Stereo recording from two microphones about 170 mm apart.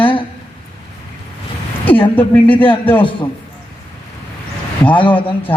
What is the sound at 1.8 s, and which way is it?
Speech, 10° left (ahead or behind).